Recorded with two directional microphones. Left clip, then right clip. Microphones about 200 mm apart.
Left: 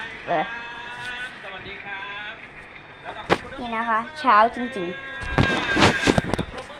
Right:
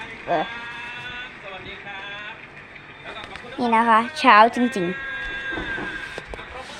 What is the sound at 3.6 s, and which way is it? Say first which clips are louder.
Speech: right 7 dB; 55° right (ahead or behind).